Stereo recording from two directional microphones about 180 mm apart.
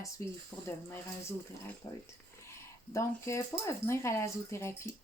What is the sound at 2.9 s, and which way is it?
Speech, 15° left (ahead or behind).